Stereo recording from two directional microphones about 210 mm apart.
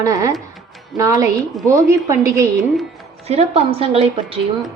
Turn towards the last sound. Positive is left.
turn(degrees=-25)  # may be behind; listen again after turning